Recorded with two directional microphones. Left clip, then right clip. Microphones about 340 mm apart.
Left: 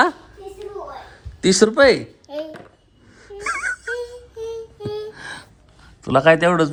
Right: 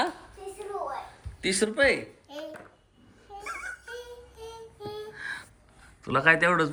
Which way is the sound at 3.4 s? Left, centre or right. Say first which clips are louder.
Left 13 dB; left.